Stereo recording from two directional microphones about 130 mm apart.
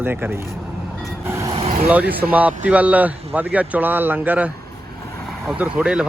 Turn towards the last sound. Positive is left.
turn(degrees=-10)  # may be behind; listen again after turning